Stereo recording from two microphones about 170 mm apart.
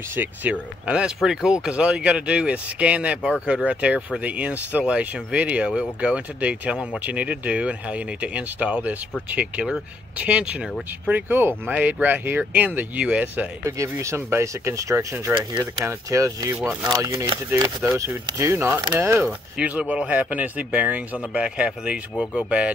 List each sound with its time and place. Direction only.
0.1 s speech: 10° right (ahead or behind)
16.5 s speech: 10° right (ahead or behind)
16.9 s speech: 20° right (ahead or behind)
22.1 s speech: 10° left (ahead or behind)